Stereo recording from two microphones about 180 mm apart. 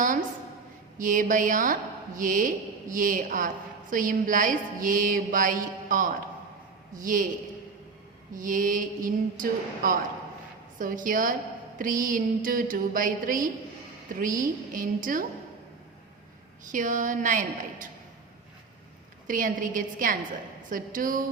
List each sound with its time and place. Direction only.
0.9 s a woman's voice: 45° right (ahead or behind)
8.4 s a woman's voice: 45° right (ahead or behind)
16.7 s a woman's voice: 45° right (ahead or behind)
19.3 s a woman's voice: 50° right (ahead or behind)